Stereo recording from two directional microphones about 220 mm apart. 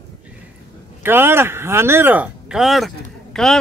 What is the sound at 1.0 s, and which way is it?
A man's voice, 10° right (ahead or behind).